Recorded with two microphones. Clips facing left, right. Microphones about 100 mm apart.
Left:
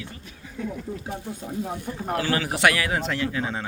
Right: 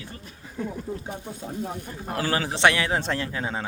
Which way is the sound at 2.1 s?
30° right (ahead or behind).